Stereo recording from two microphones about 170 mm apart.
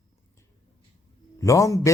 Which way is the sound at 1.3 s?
20° left (ahead or behind).